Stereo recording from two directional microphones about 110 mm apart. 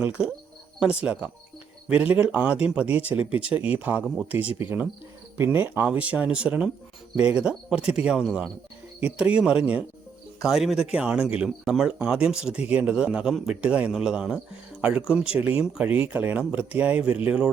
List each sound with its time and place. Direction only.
0.0 s speech: 10° right (ahead or behind)